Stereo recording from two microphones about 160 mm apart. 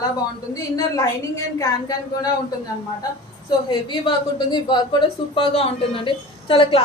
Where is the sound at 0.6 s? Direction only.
25° left (ahead or behind).